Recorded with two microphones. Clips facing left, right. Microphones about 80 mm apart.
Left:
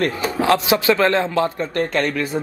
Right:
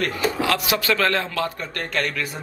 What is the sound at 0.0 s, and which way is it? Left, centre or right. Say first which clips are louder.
Speech: left 3 dB; left.